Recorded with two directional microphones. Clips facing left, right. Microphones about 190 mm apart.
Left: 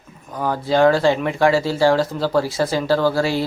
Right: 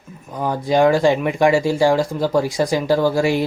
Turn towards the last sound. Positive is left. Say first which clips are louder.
# right 1 dB
turn(degrees=-15)  # may be behind; listen again after turning